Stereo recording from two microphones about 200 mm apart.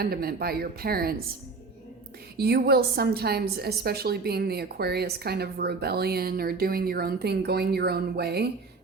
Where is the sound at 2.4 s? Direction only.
50° right (ahead or behind).